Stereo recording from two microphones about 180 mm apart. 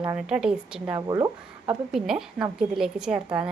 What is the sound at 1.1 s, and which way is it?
Speech, 20° right (ahead or behind).